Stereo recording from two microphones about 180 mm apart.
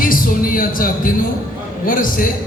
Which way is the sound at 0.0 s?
50° left (ahead or behind).